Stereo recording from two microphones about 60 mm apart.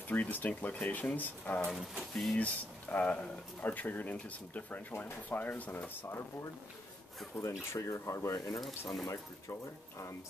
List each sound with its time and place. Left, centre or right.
0.1 s speech: left
1.7 s speech: centre
2.3 s speech: left
7.3 s speech: left
8.5 s speech: centre
9.0 s speech: left